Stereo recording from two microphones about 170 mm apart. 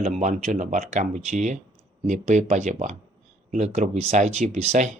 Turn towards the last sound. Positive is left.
turn(degrees=-40)  # may be behind; listen again after turning